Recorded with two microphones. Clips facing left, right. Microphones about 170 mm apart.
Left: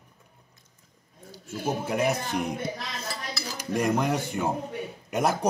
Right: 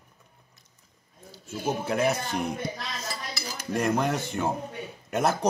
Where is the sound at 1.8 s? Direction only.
15° left (ahead or behind).